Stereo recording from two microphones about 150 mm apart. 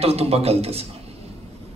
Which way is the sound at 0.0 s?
40° right (ahead or behind).